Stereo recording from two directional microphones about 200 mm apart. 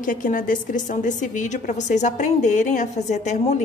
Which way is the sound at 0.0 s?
40° left (ahead or behind).